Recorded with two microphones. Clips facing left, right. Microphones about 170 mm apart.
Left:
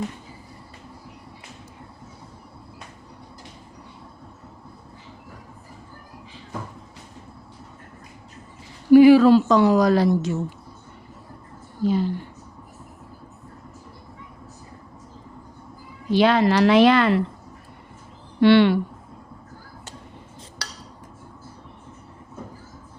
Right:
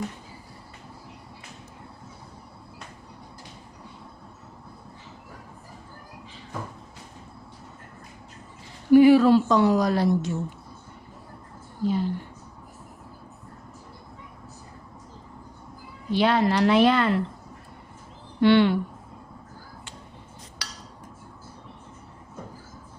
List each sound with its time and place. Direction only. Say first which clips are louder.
8.9 s a woman's voice: left 4 dB; 90° left
11.8 s a woman's voice: left 4 dB; 90° left
16.0 s a woman's voice: left 4 dB; 90° left
18.3 s speech: left 3 dB; 80° left